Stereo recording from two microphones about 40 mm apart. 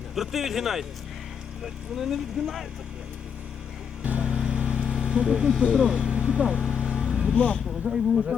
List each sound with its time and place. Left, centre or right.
0.1 s speech: centre
4.0 s vehicle: right
4.3 s vehicle: right
7.3 s speech: left
7.9 s speech: right